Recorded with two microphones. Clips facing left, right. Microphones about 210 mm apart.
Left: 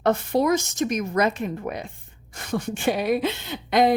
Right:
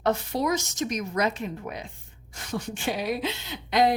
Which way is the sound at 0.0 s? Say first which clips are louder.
Left 5 dB; 55° left (ahead or behind).